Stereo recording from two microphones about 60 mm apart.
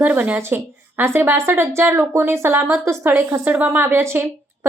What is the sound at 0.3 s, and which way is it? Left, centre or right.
A woman's voice, right.